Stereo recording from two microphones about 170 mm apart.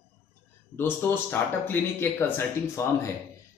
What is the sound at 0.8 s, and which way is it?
Speech, 10° left (ahead or behind).